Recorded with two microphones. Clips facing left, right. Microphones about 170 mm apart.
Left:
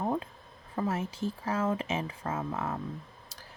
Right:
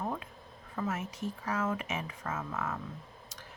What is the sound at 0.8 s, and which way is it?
Speech, 30° left (ahead or behind).